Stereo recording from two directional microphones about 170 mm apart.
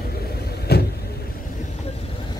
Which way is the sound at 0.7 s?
70° left (ahead or behind).